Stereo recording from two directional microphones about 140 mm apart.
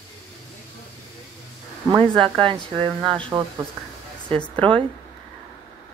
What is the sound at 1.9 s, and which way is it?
Speech, 35° right (ahead or behind).